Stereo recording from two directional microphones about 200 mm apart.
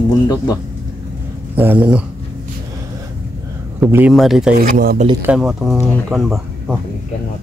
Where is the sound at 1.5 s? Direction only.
10° right (ahead or behind).